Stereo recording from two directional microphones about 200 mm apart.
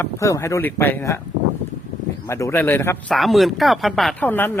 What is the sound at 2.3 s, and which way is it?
A man's voice, 15° left (ahead or behind).